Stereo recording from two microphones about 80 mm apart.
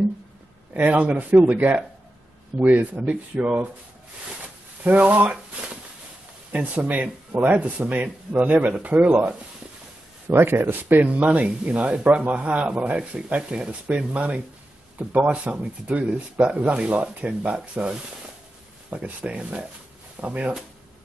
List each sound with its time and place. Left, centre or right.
0.7 s speech: centre
4.8 s speech: right